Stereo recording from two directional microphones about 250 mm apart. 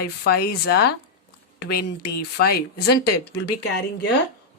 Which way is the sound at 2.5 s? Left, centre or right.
Left.